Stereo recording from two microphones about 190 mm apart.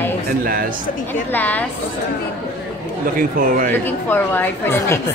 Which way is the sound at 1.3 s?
10° left (ahead or behind).